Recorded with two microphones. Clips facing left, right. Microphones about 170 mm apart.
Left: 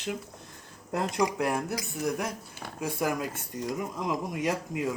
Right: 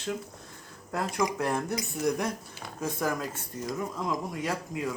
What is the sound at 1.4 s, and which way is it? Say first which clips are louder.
Speech: even; 10° left (ahead or behind).